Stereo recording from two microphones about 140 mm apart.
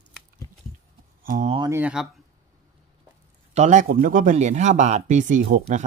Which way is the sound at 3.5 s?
55° right (ahead or behind).